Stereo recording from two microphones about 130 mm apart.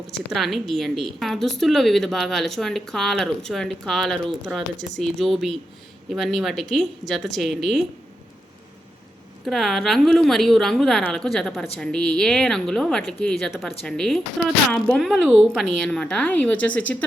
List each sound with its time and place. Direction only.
0.3 s a woman's voice: centre (ahead or behind)
9.5 s a woman's voice: centre (ahead or behind)
15.0 s speech: centre (ahead or behind)